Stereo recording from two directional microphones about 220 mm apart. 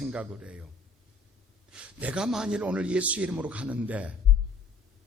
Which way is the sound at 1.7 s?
5° right (ahead or behind).